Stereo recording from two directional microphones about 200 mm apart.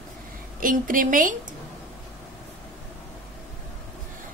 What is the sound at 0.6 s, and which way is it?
Speech, 40° right (ahead or behind).